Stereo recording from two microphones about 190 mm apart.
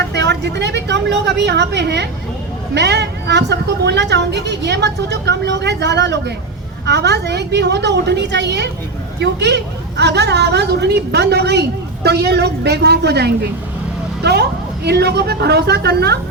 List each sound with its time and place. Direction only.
0.1 s a woman's voice: 65° right (ahead or behind)